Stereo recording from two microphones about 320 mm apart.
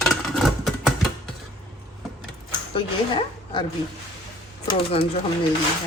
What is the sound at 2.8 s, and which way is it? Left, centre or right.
Speech, centre.